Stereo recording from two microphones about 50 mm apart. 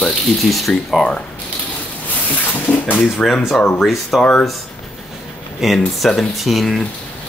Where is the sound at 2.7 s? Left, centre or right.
Left.